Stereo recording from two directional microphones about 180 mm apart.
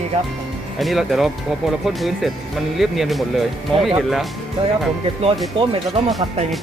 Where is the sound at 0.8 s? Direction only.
Centre (ahead or behind).